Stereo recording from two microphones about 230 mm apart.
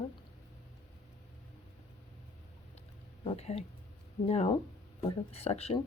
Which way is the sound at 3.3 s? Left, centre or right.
Left.